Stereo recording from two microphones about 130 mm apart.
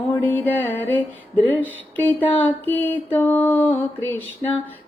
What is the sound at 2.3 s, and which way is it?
Music, 15° left (ahead or behind).